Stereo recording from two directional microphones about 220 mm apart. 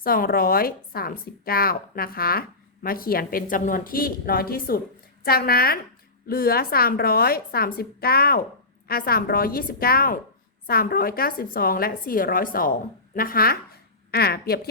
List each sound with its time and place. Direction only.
0.0 s a woman's voice: 40° left (ahead or behind)